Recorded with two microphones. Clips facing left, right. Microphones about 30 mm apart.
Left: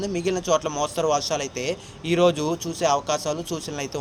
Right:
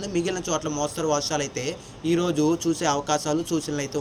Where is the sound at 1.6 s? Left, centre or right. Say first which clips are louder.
Even; left.